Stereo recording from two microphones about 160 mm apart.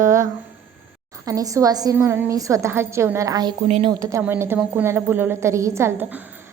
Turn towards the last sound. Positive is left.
turn(degrees=-15)  # may be behind; listen again after turning